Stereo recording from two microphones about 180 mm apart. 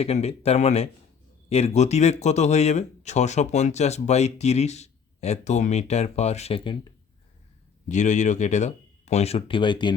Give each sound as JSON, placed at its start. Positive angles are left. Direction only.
{"t": 0.0, "sound": "speech", "side_deg": 35}
{"t": 7.9, "sound": "speech", "side_deg": 40}